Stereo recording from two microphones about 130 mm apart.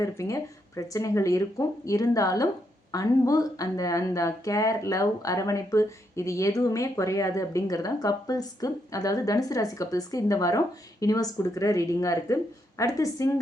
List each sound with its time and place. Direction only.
0.0 s speech: 25° left (ahead or behind)